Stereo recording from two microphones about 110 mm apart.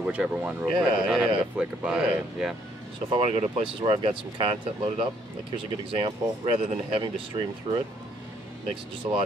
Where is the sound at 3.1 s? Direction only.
55° right (ahead or behind).